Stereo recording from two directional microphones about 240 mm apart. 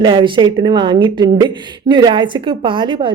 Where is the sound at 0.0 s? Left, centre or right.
Centre.